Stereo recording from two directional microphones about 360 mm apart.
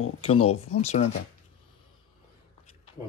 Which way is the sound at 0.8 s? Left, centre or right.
Centre.